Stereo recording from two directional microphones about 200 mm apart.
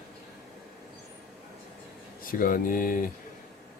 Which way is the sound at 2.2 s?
45° left (ahead or behind).